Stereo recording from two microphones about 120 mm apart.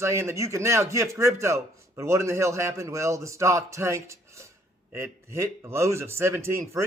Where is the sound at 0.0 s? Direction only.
20° right (ahead or behind).